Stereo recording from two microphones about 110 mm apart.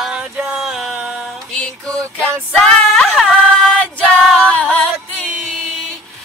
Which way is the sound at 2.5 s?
5° left (ahead or behind).